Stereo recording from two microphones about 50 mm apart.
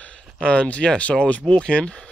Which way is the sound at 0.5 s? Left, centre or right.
Left.